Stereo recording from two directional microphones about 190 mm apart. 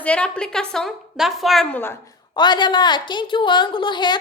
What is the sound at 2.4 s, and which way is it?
A woman's voice, 25° left (ahead or behind).